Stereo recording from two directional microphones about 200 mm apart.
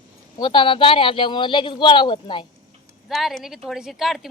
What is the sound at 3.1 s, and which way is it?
Speech, centre (ahead or behind).